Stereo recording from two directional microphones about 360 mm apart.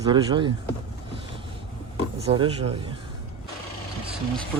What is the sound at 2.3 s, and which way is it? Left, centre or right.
Speech, centre.